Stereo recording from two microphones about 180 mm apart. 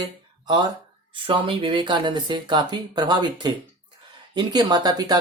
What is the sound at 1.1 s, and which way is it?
Speech, 30° right (ahead or behind).